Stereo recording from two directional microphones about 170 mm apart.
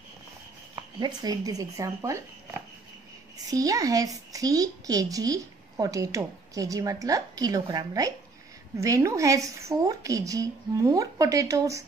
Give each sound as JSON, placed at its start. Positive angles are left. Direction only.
{"t": 0.9, "sound": "a child's voice", "side_deg": -25}
{"t": 3.4, "sound": "a child's voice", "side_deg": -20}